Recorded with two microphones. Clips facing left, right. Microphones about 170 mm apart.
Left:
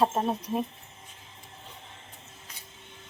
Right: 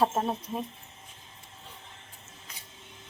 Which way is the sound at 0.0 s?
Centre (ahead or behind).